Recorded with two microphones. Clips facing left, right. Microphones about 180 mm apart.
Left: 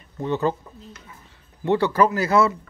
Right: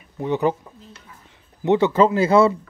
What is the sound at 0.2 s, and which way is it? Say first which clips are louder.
Speech: right 2 dB; 15° right (ahead or behind).